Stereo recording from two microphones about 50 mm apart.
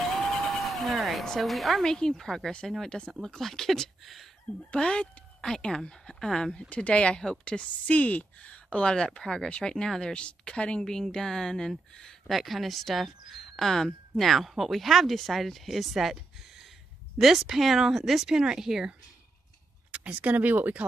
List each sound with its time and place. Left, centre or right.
0.2 s vehicle: centre
1.2 s a woman's voice: centre
1.9 s a woman's voice: centre
4.6 s a woman's voice: left
6.7 s speech: left
10.8 s speech: centre
12.3 s a woman's voice: centre
17.2 s a woman's voice: centre
18.3 s speech: centre
19.9 s speech: right